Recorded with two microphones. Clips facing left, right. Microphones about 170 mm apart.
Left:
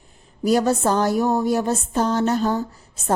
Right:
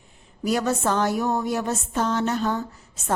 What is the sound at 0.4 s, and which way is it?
A woman's voice, 35° left (ahead or behind).